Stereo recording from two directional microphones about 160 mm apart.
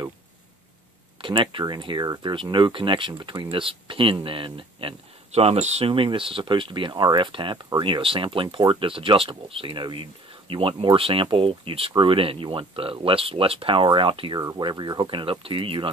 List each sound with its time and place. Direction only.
1.2 s speech: 30° right (ahead or behind)